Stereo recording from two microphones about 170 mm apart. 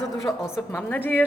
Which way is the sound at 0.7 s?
10° left (ahead or behind).